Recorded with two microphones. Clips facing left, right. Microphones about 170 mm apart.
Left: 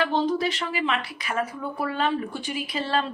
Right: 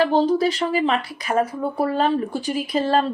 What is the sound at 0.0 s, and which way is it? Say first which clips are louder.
Speech: right 6 dB; 35° right (ahead or behind).